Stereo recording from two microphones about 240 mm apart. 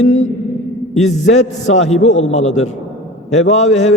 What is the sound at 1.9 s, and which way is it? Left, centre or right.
Speech, left.